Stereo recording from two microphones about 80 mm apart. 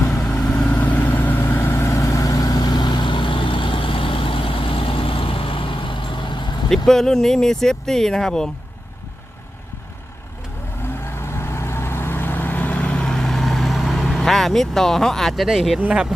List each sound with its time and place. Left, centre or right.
0.3 s vehicle: centre; by 6.5 s left
6.7 s speech: centre
10.8 s vehicle: left; by 15.8 s centre
15.8 s speech: centre